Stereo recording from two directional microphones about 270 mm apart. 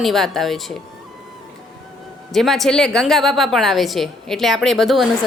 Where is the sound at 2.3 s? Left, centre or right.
Centre.